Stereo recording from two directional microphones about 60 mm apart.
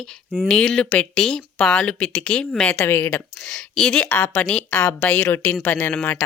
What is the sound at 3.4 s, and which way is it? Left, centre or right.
Speech, centre.